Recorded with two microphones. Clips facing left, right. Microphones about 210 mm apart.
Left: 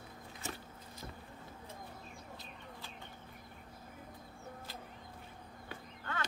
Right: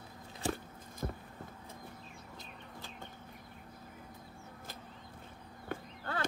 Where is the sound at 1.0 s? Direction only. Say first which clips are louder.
Right 10 dB; 50° right (ahead or behind).